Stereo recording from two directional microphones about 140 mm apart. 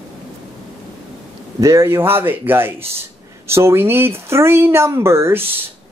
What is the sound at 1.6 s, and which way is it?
Speech, 20° right (ahead or behind).